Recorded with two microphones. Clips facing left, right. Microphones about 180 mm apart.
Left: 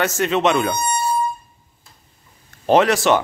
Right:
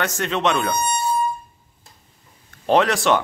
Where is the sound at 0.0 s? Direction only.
5° left (ahead or behind).